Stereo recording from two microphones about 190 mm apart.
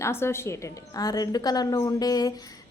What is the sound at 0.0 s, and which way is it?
A woman's voice, 15° left (ahead or behind).